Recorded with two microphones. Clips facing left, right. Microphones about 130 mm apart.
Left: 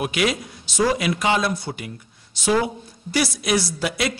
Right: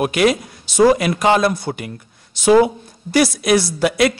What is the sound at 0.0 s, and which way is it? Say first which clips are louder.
A man's voice: right 7 dB; 50° right (ahead or behind).